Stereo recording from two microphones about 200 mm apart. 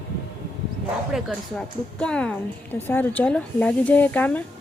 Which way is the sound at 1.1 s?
Centre (ahead or behind).